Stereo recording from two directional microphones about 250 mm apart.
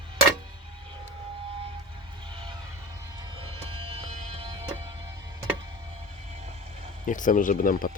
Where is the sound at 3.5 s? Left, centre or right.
Right.